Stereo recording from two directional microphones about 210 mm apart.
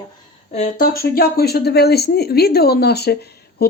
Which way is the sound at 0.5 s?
40° left (ahead or behind).